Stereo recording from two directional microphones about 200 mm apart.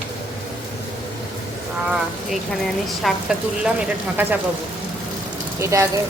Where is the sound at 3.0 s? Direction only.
5° right (ahead or behind).